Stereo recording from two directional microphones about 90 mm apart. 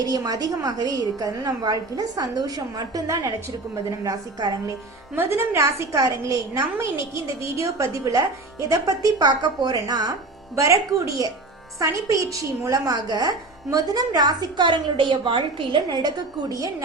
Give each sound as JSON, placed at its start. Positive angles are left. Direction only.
{"t": 0.0, "sound": "a woman's voice", "side_deg": -40}
{"t": 5.1, "sound": "a woman's voice", "side_deg": -25}
{"t": 10.5, "sound": "a woman's voice", "side_deg": -35}
{"t": 16.0, "sound": "a woman's voice", "side_deg": -45}